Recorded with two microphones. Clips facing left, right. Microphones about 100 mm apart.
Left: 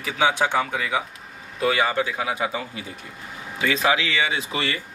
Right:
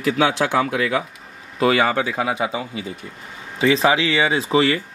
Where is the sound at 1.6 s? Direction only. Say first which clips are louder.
Right 4 dB; 90° right.